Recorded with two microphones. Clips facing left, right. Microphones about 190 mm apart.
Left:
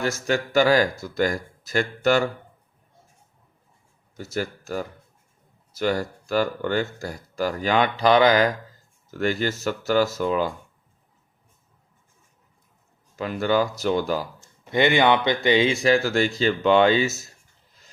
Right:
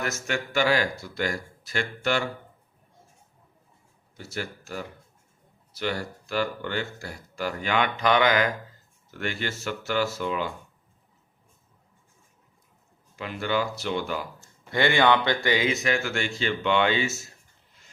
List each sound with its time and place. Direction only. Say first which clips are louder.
0.0 s speech: left 6 dB; 35° left (ahead or behind)
4.2 s speech: left 6 dB; 45° left (ahead or behind)
13.1 s speech: left 6 dB; 40° left (ahead or behind)
14.6 s speech: left 3 dB; 20° left (ahead or behind); by 17.2 s 40° left (ahead or behind)